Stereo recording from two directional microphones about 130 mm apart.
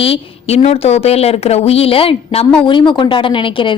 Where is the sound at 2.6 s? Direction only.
35° left (ahead or behind).